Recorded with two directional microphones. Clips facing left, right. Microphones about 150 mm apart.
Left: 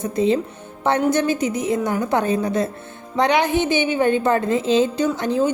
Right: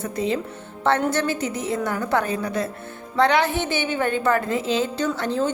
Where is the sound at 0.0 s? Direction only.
25° left (ahead or behind).